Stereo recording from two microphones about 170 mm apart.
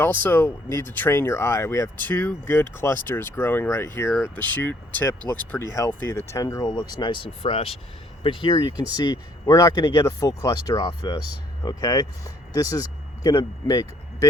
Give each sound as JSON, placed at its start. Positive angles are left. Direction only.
{"t": 0.0, "sound": "speech", "side_deg": 10}